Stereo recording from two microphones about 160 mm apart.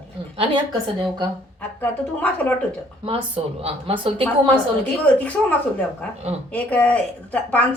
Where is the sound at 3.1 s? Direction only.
35° right (ahead or behind).